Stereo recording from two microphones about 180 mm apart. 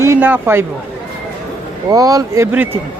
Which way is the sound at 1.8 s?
20° right (ahead or behind).